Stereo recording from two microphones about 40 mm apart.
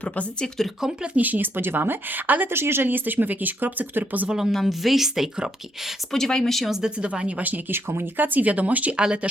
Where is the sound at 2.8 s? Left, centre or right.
Right.